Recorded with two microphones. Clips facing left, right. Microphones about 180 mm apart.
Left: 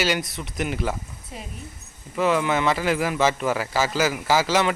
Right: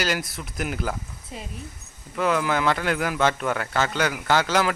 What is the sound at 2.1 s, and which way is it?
Speech, centre (ahead or behind).